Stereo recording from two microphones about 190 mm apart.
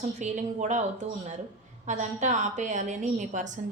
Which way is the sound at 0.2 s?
40° right (ahead or behind).